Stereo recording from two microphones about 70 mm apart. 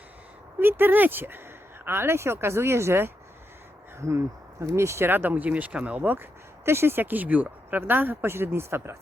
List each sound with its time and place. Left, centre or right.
0.6 s speech: right
4.6 s speech: right
6.7 s speech: right